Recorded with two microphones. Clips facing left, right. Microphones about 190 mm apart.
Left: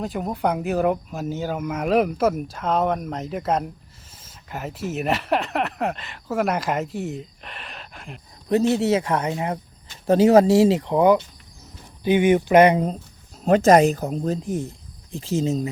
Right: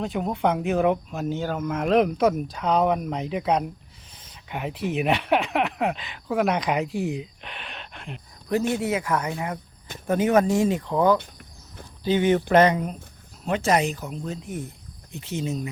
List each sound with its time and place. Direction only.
0.0 s speech: centre (ahead or behind)
8.4 s speech: 25° left (ahead or behind)
10.5 s speech: 80° left
10.8 s speech: 20° left (ahead or behind)
13.4 s speech: 40° left (ahead or behind)